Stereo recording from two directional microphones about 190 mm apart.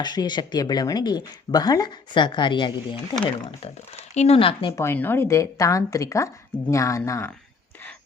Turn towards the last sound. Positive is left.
turn(degrees=10)  # may be behind; listen again after turning